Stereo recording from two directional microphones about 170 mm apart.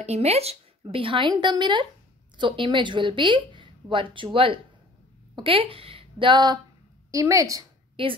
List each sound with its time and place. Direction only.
0.0 s a woman's voice: 40° right (ahead or behind); by 7.6 s 20° right (ahead or behind)